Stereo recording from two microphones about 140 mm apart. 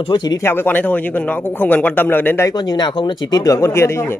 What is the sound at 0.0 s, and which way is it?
Speech, 30° left (ahead or behind).